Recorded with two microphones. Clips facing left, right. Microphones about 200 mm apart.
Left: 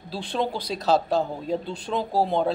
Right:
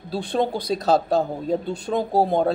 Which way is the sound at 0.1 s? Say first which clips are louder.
Right 4 dB; 50° right (ahead or behind).